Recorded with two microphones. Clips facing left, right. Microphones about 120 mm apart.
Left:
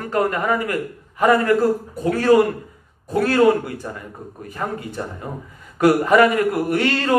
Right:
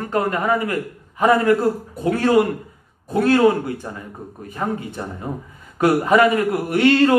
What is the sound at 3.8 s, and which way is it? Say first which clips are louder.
Speech: left 1 dB; 20° right (ahead or behind).